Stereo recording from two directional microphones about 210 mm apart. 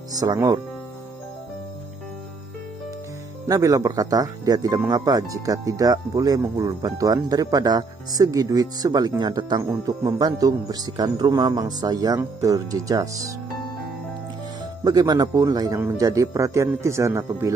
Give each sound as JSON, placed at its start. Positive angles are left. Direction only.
{"t": 0.1, "sound": "speech", "side_deg": -15}
{"t": 3.4, "sound": "speech", "side_deg": -15}
{"t": 14.8, "sound": "speech", "side_deg": -20}